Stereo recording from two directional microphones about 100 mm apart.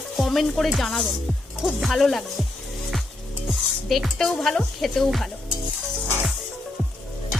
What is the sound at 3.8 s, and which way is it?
Speech, centre (ahead or behind).